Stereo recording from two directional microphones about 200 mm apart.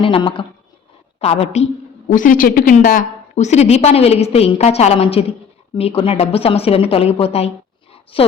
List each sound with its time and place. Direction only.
0.0 s a woman's voice: 25° left (ahead or behind)